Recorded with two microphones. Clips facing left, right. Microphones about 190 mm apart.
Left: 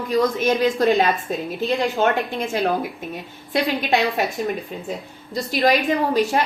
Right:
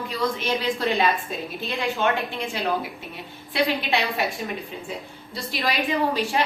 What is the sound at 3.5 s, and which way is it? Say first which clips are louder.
Speech: left 3 dB; 45° left (ahead or behind).